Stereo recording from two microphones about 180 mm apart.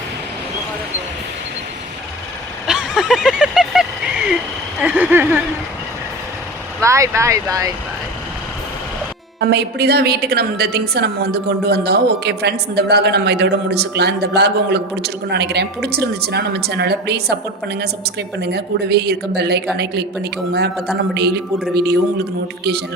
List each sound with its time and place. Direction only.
2.6 s vehicle: 5° right (ahead or behind)
4.8 s speech: 10° right (ahead or behind)
6.8 s speech: 15° right (ahead or behind)
9.4 s a woman's voice: 65° right (ahead or behind)
21.1 s a man's voice: 65° right (ahead or behind)